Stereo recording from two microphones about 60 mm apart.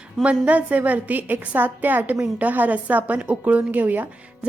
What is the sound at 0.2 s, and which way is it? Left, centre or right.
A woman's voice, right.